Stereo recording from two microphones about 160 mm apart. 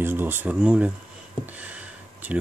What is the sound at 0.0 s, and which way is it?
Speech, 15° right (ahead or behind).